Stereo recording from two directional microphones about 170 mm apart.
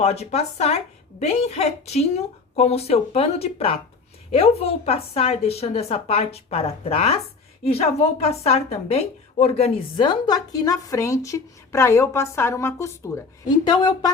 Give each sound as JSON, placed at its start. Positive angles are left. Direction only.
{"t": 0.0, "sound": "a woman's voice", "side_deg": 40}